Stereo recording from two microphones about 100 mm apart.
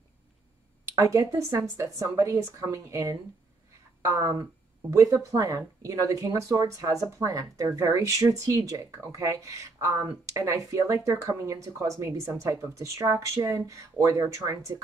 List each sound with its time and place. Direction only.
1.1 s speech: 35° right (ahead or behind)